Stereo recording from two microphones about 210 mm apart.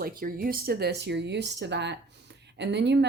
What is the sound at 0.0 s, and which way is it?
A woman's voice, 45° right (ahead or behind).